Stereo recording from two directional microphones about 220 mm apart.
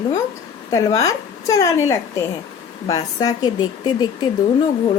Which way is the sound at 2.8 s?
15° left (ahead or behind).